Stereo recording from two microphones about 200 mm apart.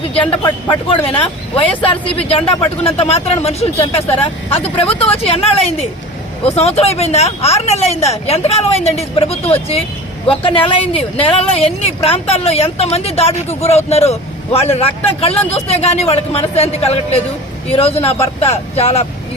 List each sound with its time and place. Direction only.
0.1 s speech: 30° left (ahead or behind)